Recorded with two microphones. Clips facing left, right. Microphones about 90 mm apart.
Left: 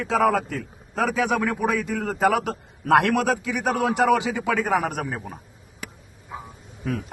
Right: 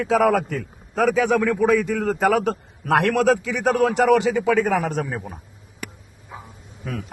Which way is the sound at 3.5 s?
10° left (ahead or behind).